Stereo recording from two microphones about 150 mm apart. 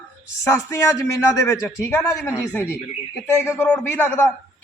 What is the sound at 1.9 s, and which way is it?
Speech, 15° left (ahead or behind).